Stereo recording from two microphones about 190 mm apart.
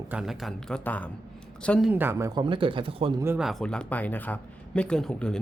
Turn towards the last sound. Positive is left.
turn(degrees=5)  # may be behind; listen again after turning